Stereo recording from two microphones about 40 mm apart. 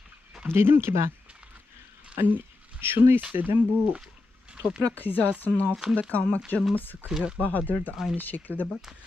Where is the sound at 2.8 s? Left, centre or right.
Right.